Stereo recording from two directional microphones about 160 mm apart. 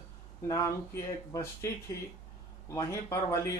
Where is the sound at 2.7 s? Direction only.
20° left (ahead or behind).